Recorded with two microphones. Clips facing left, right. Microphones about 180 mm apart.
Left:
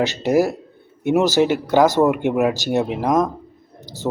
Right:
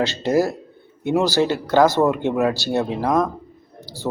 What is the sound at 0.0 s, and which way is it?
Speech, 15° left (ahead or behind).